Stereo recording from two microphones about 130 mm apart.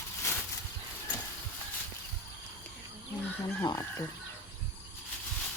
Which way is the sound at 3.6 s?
30° left (ahead or behind).